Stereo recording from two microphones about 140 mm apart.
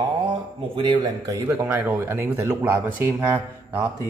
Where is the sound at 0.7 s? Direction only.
35° right (ahead or behind).